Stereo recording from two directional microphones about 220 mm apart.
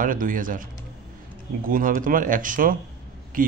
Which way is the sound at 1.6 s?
40° right (ahead or behind).